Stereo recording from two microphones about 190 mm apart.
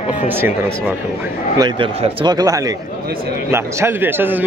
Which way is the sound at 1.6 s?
25° right (ahead or behind).